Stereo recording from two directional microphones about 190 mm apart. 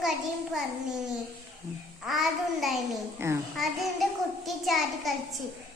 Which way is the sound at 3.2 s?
15° right (ahead or behind).